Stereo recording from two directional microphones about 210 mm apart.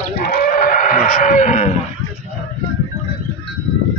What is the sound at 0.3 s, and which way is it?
Livestock, 45° left (ahead or behind).